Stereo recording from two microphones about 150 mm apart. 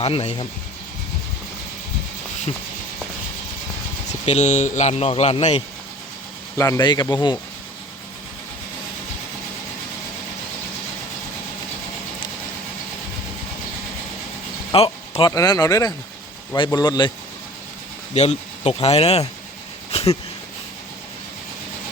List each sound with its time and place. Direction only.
0.0 s speech: 40° left (ahead or behind)
4.3 s speech: 50° left (ahead or behind)
6.6 s speech: 25° left (ahead or behind)
14.7 s a sound: 40° left (ahead or behind)
15.3 s speech: 25° left (ahead or behind)
18.1 s speech: 45° left (ahead or behind)
19.9 s a sound: 45° left (ahead or behind)